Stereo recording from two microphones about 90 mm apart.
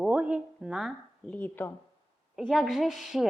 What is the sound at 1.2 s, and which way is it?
Speech, 15° left (ahead or behind).